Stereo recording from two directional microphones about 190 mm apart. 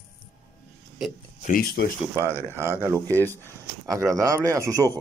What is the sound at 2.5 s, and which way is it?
Speech, 10° right (ahead or behind).